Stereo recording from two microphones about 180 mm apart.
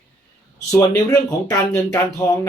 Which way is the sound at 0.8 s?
20° left (ahead or behind).